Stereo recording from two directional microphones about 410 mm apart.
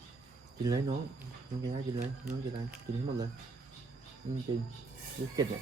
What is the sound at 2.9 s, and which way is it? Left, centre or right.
Speech, right.